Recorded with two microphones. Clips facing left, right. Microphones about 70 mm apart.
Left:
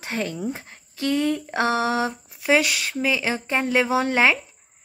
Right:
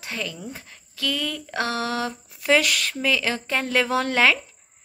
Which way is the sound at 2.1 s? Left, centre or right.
Centre.